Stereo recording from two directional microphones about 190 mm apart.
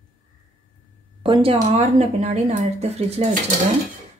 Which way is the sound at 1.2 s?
30° right (ahead or behind).